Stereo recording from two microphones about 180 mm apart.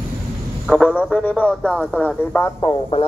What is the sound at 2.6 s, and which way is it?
Speech, 30° left (ahead or behind).